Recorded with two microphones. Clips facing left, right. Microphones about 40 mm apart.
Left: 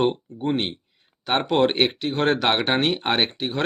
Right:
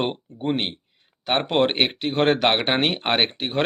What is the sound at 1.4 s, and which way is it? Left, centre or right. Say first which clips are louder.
Speech: left 2 dB; right.